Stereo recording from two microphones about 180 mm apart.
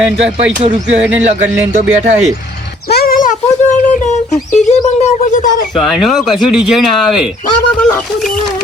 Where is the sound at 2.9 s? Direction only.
55° left (ahead or behind).